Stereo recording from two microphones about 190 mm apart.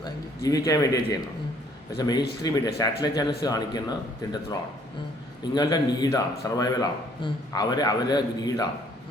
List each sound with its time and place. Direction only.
0.0 s a man's voice: 20° left (ahead or behind)